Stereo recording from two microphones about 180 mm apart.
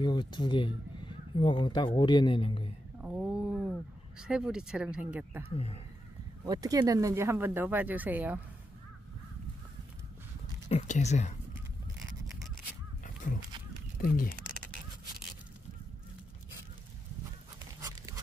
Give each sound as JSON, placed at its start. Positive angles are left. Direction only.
{"t": 0.0, "sound": "speech", "side_deg": 25}
{"t": 3.0, "sound": "speech", "side_deg": -5}
{"t": 5.5, "sound": "speech", "side_deg": 35}
{"t": 6.4, "sound": "speech", "side_deg": -20}
{"t": 10.7, "sound": "speech", "side_deg": 40}
{"t": 13.0, "sound": "a sound", "side_deg": 45}
{"t": 13.9, "sound": "speech", "side_deg": 55}
{"t": 17.7, "sound": "pant", "side_deg": -20}